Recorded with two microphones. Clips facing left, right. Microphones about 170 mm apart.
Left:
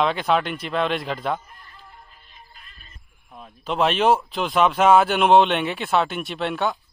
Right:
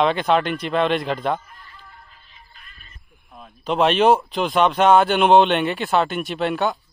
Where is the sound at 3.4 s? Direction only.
Centre (ahead or behind).